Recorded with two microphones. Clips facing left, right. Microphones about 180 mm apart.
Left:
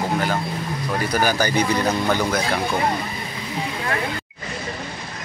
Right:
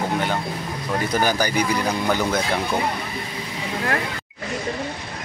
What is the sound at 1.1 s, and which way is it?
Speech, 20° right (ahead or behind).